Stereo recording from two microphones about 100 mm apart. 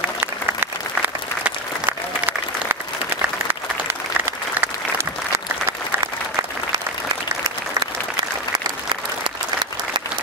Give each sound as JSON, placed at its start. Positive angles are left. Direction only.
{"t": 0.2, "sound": "applause", "side_deg": -20}